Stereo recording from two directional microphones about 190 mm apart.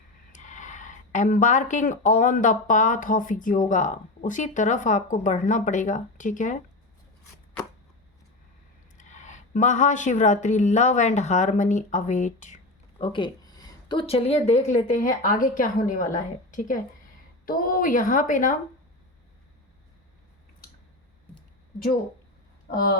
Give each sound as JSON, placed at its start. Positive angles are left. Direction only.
{"t": 0.3, "sound": "speech", "side_deg": 40}
{"t": 9.0, "sound": "speech", "side_deg": 40}
{"t": 13.0, "sound": "a woman's voice", "side_deg": 25}